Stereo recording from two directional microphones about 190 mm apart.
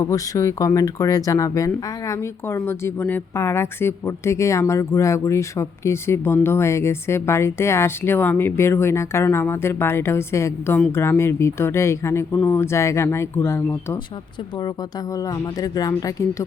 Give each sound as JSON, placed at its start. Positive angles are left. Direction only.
{"t": 0.0, "sound": "speech", "side_deg": 15}
{"t": 15.1, "sound": "speech", "side_deg": 20}